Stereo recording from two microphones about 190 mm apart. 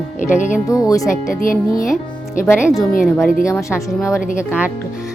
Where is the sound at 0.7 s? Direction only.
15° left (ahead or behind).